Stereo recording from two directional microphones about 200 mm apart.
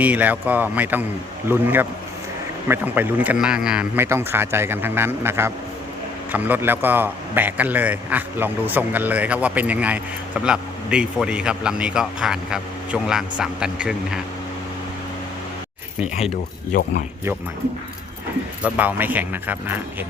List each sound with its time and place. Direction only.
0.0 s a man's voice: 10° right (ahead or behind)
16.7 s speech: 40° left (ahead or behind)
18.6 s a man's voice: 10° right (ahead or behind)